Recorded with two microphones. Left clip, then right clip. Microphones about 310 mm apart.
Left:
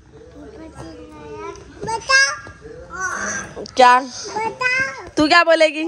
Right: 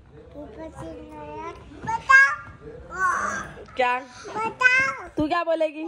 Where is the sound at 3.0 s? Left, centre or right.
Right.